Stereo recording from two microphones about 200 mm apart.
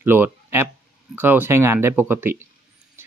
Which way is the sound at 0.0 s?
10° right (ahead or behind).